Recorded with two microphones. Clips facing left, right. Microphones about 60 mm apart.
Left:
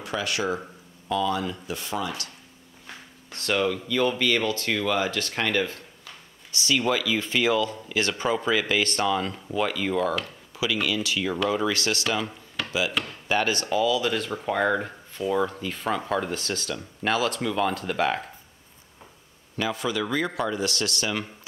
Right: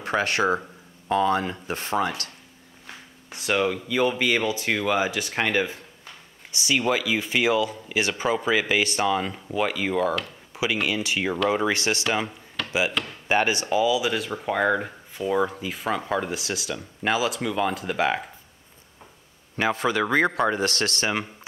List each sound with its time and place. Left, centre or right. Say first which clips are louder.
0.0 s speech: right 5 dB; right
3.3 s speech: right 1 dB; centre
10.5 s speech: right 1 dB; right
12.6 s a sound: even; centre
13.3 s speech: right 2 dB; right
19.5 s speech: right 4 dB; right